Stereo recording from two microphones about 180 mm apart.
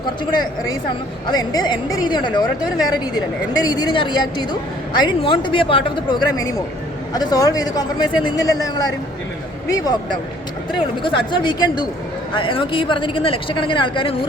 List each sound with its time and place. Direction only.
1.3 s speech: 20° left (ahead or behind)